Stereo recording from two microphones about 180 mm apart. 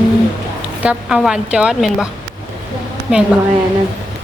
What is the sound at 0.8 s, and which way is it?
A woman's voice, 5° right (ahead or behind).